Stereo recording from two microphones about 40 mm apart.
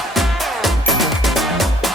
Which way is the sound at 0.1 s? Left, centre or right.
Centre.